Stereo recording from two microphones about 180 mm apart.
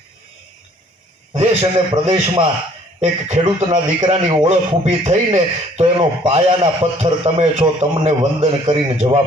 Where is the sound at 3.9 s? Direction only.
25° right (ahead or behind).